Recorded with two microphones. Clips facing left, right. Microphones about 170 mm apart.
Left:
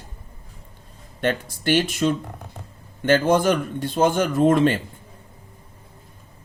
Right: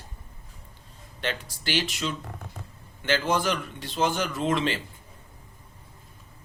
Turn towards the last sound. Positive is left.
turn(degrees=50)  # may be behind; listen again after turning